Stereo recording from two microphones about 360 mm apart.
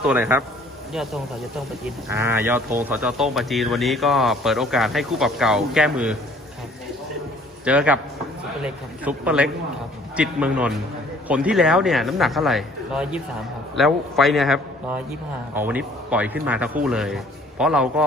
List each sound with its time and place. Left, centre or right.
0.0 s speech: centre
7.6 s speech: centre